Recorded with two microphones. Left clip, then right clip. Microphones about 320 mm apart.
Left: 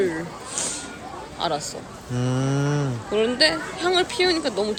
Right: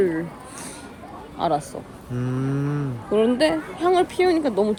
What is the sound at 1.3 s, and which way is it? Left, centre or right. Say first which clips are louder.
Speech: right 3 dB; centre.